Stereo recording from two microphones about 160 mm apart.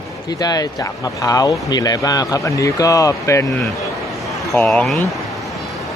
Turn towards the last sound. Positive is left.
turn(degrees=0)  # may be behind; listen again after turning